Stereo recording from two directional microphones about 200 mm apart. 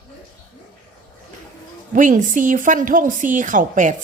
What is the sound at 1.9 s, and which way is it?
A woman's voice, 40° right (ahead or behind).